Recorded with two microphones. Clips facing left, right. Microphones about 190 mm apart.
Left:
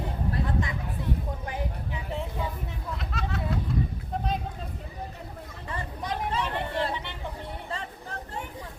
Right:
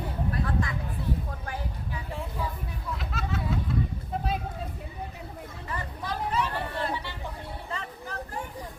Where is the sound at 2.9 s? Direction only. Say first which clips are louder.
Right 1 dB; centre (ahead or behind).